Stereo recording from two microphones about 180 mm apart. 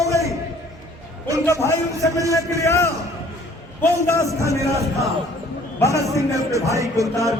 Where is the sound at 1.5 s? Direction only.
15° left (ahead or behind).